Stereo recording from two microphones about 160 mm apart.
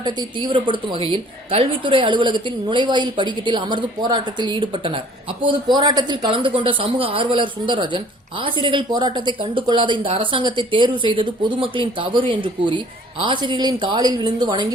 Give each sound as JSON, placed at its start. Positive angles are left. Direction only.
{"t": 0.0, "sound": "a woman's voice", "side_deg": -30}